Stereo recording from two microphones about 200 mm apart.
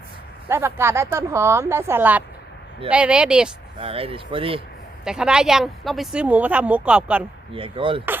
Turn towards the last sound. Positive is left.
turn(degrees=-25)  # may be behind; listen again after turning